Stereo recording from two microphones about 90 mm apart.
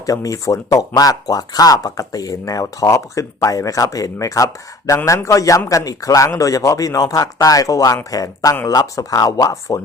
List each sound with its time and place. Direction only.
0.0 s speech: 40° left (ahead or behind)